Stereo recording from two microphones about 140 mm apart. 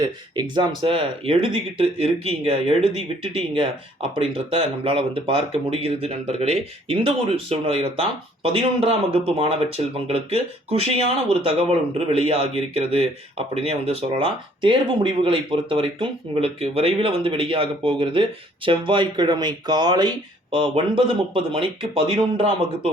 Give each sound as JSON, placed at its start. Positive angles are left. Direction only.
{"t": 0.0, "sound": "speech", "side_deg": -35}